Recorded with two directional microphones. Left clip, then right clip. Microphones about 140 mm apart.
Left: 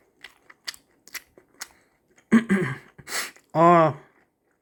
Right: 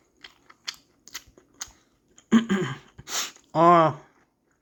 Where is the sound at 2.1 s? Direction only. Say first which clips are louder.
Left 2 dB; 20° left (ahead or behind).